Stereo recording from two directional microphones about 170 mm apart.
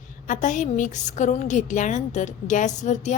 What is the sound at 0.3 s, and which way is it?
A woman's voice, 50° left (ahead or behind).